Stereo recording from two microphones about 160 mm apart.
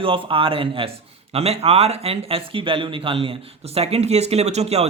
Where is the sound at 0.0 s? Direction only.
35° right (ahead or behind).